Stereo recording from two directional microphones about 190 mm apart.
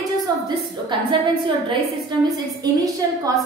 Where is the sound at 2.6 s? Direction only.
20° right (ahead or behind).